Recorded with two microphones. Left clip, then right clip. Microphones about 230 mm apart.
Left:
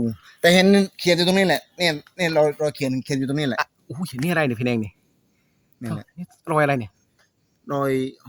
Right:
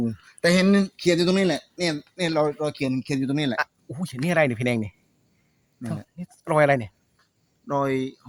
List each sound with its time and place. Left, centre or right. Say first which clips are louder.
0.3 s speech: left 5 dB; left
3.6 s speech: left 1 dB; centre
6.1 s speech: even; centre
7.7 s speech: left 1 dB; left